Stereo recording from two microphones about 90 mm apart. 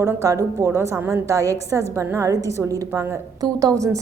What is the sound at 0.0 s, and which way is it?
A woman's voice, 35° right (ahead or behind).